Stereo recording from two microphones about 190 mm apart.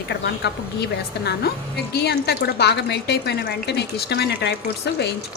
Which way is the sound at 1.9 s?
60° left (ahead or behind).